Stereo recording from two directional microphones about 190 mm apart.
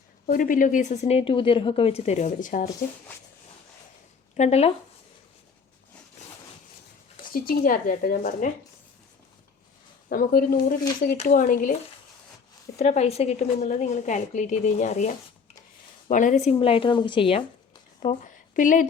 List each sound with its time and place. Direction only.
0.3 s speech: 45° left (ahead or behind)
4.4 s speech: 35° left (ahead or behind)
7.2 s speech: 50° left (ahead or behind)
10.1 s speech: 50° left (ahead or behind)
12.8 s speech: 35° left (ahead or behind)
18.0 s speech: 40° left (ahead or behind)